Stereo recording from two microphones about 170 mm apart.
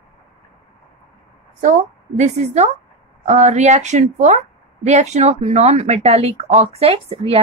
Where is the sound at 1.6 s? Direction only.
45° right (ahead or behind).